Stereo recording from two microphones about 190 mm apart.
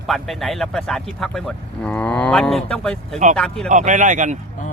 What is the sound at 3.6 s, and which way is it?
Speech, 40° right (ahead or behind).